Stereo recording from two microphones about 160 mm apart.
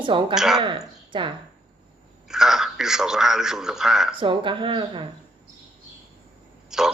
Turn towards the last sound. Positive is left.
turn(degrees=-5)  # may be behind; listen again after turning